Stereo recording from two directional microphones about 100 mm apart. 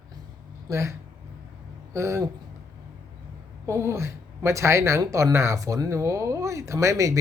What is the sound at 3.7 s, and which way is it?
Speech, 30° right (ahead or behind).